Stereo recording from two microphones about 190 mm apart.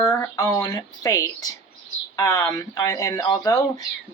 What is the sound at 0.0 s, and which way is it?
Speech, 15° left (ahead or behind).